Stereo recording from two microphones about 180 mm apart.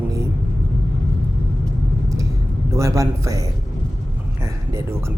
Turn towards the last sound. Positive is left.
turn(degrees=-15)  # may be behind; listen again after turning